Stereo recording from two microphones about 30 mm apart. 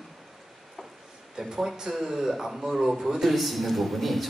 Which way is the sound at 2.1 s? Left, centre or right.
Centre.